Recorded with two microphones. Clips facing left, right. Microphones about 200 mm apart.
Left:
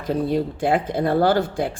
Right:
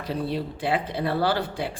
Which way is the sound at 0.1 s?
45° left (ahead or behind).